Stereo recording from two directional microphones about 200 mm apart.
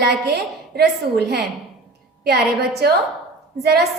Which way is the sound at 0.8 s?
55° right (ahead or behind).